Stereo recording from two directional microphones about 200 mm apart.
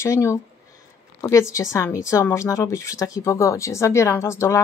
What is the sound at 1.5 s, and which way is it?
A woman's voice, 15° left (ahead or behind).